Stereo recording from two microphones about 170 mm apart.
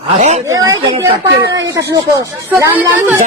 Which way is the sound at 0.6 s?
20° right (ahead or behind).